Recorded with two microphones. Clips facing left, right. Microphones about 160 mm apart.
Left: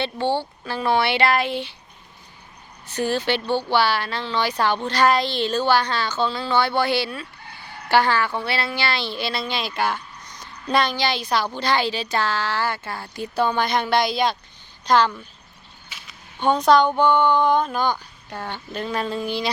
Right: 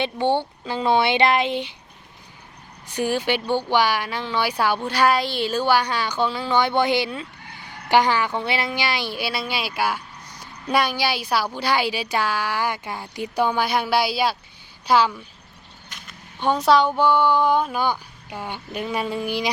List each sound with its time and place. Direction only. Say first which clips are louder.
0.0 s speech: right 2 dB; 20° right (ahead or behind)
2.8 s a woman's voice: even; 15° right (ahead or behind)
15.9 s a sound: right 1 dB; 5° left (ahead or behind); by 19.5 s 10° right (ahead or behind)